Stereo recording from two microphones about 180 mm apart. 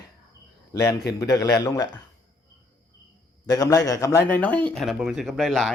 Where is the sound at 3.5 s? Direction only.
20° left (ahead or behind).